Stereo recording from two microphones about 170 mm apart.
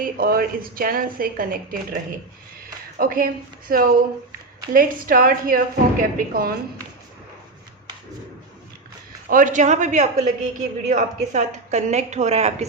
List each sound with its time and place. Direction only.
0.0 s a woman's voice: 60° right (ahead or behind)
3.0 s a woman's voice: 55° right (ahead or behind)
9.3 s a woman's voice: 50° right (ahead or behind)